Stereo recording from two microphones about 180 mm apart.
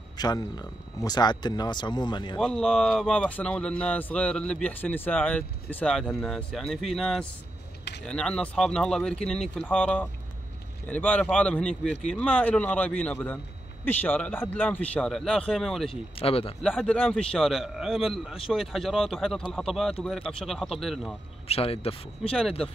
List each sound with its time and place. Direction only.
0.2 s speech: 20° left (ahead or behind)
2.3 s speech: 5° left (ahead or behind)
15.9 s speech: 30° left (ahead or behind)
16.6 s speech: 5° left (ahead or behind)
21.5 s speech: 35° left (ahead or behind)